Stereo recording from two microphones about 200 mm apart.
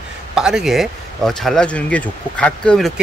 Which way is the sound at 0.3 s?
5° right (ahead or behind).